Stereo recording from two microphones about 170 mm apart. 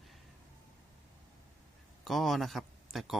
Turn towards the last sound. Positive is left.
turn(degrees=0)  # may be behind; listen again after turning